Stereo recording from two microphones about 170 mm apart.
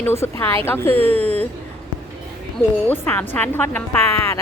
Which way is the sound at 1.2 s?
35° right (ahead or behind).